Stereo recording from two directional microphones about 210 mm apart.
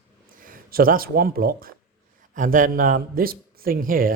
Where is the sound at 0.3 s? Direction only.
40° right (ahead or behind).